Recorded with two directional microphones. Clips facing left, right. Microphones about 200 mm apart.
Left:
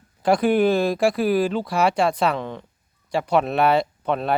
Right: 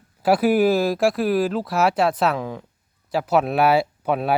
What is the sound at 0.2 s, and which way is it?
Speech, 5° right (ahead or behind).